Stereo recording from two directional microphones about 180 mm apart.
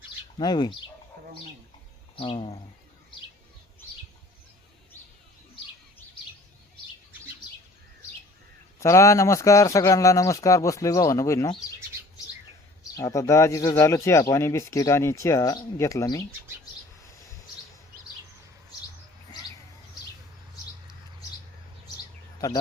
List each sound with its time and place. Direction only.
0.3 s speech: 25° left (ahead or behind)
2.1 s speech: 30° left (ahead or behind)
8.8 s speech: 15° left (ahead or behind)
13.0 s speech: 15° left (ahead or behind)
22.4 s speech: 20° left (ahead or behind)